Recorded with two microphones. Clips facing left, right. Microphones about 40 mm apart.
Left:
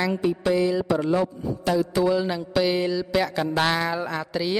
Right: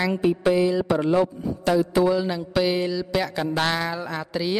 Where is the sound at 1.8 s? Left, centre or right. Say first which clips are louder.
Right 2 dB; centre.